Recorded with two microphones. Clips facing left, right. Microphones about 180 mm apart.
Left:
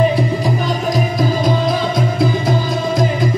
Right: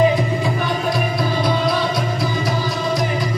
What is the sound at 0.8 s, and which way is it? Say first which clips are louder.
Music: left 3 dB; 40° left (ahead or behind).